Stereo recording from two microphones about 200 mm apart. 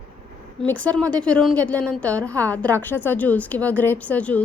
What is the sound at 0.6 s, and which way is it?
A woman's voice, 5° left (ahead or behind).